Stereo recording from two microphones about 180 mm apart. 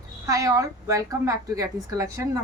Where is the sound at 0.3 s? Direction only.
20° right (ahead or behind).